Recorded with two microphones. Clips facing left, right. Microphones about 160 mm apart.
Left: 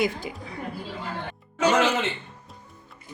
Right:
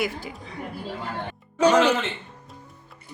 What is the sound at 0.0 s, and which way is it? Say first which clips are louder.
Speech: left 2 dB; 20° left (ahead or behind).